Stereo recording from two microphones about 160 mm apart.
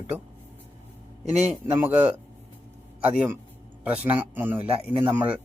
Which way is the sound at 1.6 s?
15° right (ahead or behind).